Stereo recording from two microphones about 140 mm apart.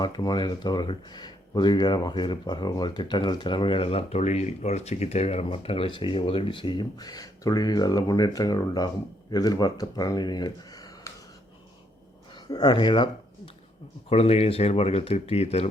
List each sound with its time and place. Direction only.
0.0 s speech: 30° left (ahead or behind)
12.3 s speech: 30° left (ahead or behind)
14.1 s speech: 45° left (ahead or behind)